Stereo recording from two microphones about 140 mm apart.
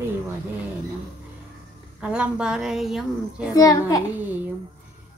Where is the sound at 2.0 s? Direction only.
5° right (ahead or behind).